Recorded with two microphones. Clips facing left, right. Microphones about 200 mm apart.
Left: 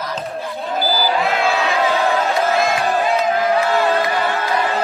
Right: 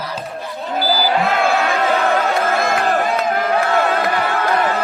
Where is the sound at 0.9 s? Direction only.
50° right (ahead or behind).